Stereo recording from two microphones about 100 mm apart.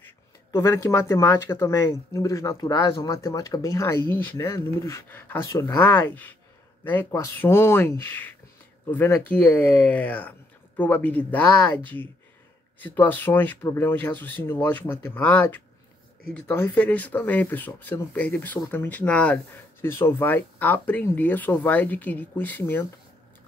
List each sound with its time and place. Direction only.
0.0 s speech: 30° left (ahead or behind)
5.5 s speech: 35° left (ahead or behind)
6.0 s speech: 20° left (ahead or behind)
19.8 s speech: 25° left (ahead or behind)